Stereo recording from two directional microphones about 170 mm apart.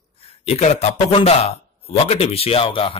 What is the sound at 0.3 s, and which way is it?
Speech, 40° left (ahead or behind).